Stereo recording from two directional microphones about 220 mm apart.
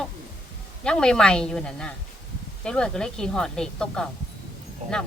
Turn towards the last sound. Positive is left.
turn(degrees=-30)  # may be behind; listen again after turning